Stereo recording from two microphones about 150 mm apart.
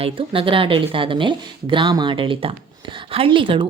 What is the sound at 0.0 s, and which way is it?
A woman's voice, 35° right (ahead or behind).